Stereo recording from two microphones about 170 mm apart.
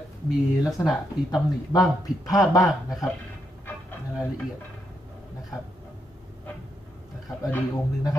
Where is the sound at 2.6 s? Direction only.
Centre (ahead or behind).